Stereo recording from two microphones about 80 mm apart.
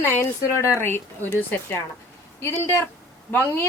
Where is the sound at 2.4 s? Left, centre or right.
Left.